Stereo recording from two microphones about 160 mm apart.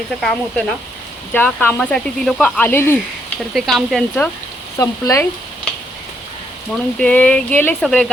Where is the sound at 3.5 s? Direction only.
Centre (ahead or behind).